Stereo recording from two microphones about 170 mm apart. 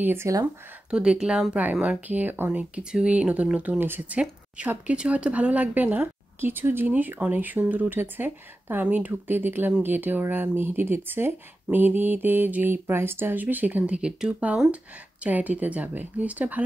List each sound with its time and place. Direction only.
0.0 s speech: 15° right (ahead or behind)
0.8 s speech: 5° right (ahead or behind)